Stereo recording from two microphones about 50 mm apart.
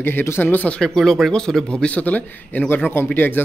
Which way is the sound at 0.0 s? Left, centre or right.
Left.